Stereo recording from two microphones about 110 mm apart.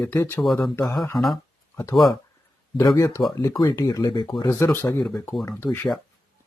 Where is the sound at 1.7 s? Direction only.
25° left (ahead or behind).